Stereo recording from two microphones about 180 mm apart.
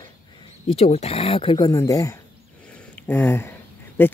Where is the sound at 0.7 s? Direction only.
35° left (ahead or behind); by 4.1 s 10° left (ahead or behind).